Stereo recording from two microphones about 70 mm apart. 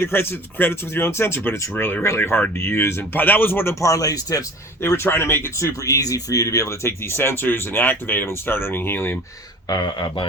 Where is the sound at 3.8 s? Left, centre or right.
Left.